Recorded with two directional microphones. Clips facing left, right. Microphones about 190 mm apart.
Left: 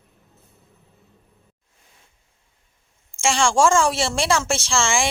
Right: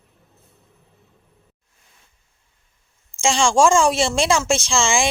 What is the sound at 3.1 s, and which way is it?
A woman's voice, 15° right (ahead or behind).